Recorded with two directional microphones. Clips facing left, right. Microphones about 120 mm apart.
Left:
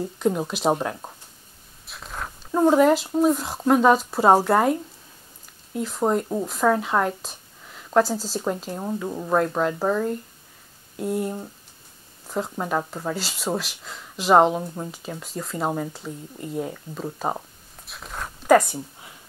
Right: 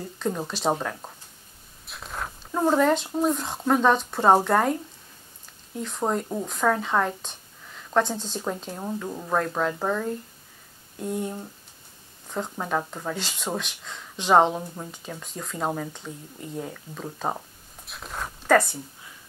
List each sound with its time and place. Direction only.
0.2 s speech: 10° left (ahead or behind)
1.9 s a sound: centre (ahead or behind)
2.6 s speech: 5° left (ahead or behind)
5.8 s speech: 5° left (ahead or behind)
17.8 s a sound: centre (ahead or behind)
18.5 s speech: 15° left (ahead or behind)